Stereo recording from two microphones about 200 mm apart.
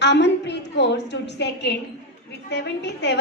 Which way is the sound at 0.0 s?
60° left (ahead or behind).